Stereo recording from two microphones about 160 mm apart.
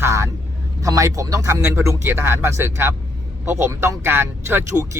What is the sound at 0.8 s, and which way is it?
Speech, 20° right (ahead or behind).